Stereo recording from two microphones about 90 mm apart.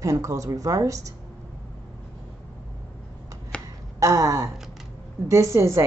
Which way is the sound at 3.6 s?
40° right (ahead or behind).